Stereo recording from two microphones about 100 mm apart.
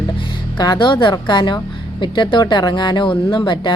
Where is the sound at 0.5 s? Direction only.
50° left (ahead or behind).